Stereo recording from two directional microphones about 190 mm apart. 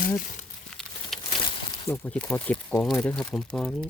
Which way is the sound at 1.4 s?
25° left (ahead or behind).